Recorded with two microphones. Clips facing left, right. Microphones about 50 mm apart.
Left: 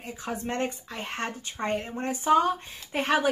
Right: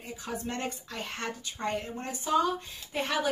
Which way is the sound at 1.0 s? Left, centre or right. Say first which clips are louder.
Left 4 dB; left.